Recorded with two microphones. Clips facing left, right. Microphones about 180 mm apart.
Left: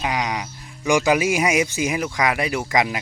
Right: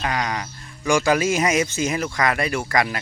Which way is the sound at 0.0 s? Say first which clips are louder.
Left 1 dB; 15° left (ahead or behind).